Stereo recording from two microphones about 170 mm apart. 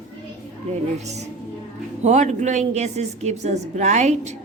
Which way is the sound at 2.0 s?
45° right (ahead or behind).